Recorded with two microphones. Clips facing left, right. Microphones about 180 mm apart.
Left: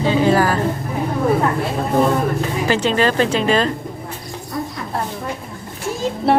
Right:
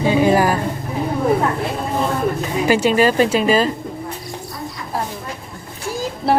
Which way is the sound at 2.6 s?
10° right (ahead or behind).